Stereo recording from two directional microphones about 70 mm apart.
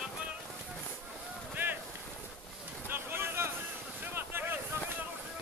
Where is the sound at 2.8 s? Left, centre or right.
Right.